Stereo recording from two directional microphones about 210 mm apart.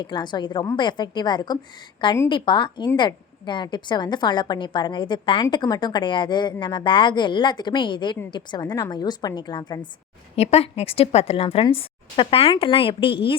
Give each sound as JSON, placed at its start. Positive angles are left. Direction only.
{"t": 0.0, "sound": "a woman's voice", "side_deg": 20}